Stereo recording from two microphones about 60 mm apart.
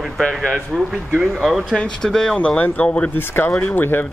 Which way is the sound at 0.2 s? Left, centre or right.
Centre.